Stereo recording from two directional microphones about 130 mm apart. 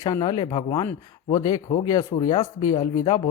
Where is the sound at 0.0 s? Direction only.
30° left (ahead or behind).